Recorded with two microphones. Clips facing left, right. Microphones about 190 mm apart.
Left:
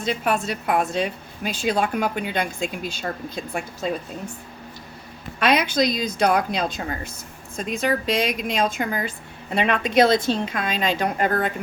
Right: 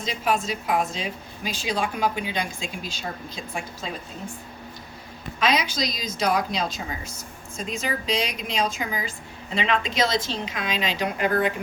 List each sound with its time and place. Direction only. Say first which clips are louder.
0.1 s speech: left 2 dB; 60° left (ahead or behind)
5.4 s speech: left 4 dB; 60° left (ahead or behind)